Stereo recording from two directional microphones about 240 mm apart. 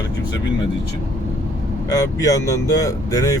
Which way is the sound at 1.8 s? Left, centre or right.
Centre.